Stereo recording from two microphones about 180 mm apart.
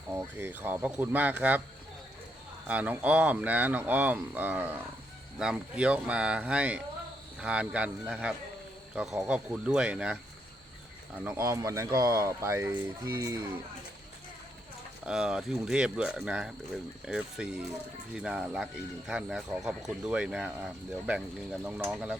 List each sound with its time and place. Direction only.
0.1 s speech: 15° right (ahead or behind)
2.6 s speech: 10° right (ahead or behind)
11.2 s speech: 10° right (ahead or behind)
15.0 s speech: 5° right (ahead or behind)